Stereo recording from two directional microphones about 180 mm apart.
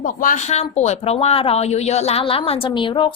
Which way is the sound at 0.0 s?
45° left (ahead or behind).